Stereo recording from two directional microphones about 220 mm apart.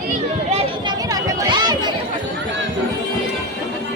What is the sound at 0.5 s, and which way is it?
Chatter, 20° right (ahead or behind).